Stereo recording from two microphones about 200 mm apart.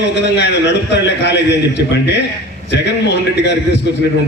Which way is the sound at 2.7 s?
60° left (ahead or behind).